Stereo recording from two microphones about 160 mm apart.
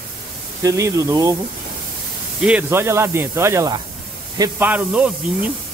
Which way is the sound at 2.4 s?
10° right (ahead or behind).